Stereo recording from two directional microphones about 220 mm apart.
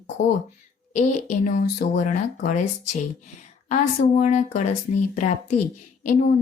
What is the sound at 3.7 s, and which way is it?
Speech, 35° left (ahead or behind).